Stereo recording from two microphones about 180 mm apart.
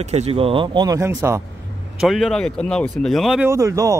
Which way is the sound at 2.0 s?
Centre (ahead or behind).